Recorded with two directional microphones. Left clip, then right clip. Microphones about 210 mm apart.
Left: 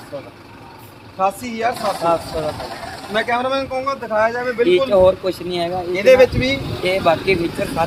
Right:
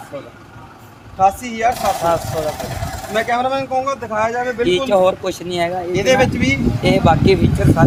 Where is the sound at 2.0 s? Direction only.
10° right (ahead or behind).